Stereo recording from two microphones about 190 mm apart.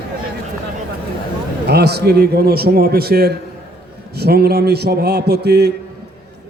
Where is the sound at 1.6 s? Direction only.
60° right (ahead or behind).